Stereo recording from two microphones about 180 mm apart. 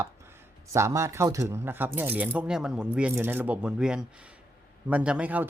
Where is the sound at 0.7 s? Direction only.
15° right (ahead or behind).